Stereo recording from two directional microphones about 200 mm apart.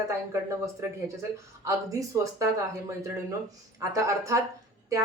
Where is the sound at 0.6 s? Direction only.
15° right (ahead or behind).